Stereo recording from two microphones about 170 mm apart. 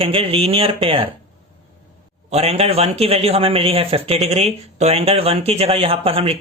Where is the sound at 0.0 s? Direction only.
35° right (ahead or behind).